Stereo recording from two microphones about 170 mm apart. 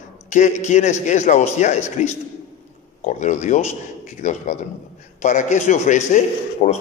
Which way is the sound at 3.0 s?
45° left (ahead or behind).